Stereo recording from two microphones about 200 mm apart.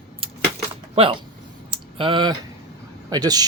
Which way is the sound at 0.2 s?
30° right (ahead or behind).